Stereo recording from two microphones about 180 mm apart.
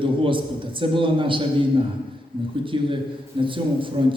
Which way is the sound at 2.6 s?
30° right (ahead or behind).